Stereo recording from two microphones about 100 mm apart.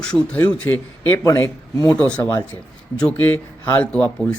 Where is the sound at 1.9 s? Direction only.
15° left (ahead or behind).